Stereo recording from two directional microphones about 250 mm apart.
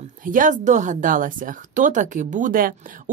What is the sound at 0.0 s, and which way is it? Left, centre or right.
Speech, right.